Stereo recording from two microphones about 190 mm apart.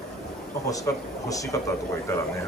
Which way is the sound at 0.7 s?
15° left (ahead or behind).